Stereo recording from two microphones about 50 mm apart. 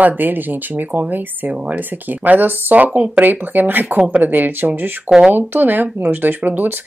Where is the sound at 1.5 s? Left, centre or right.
Right.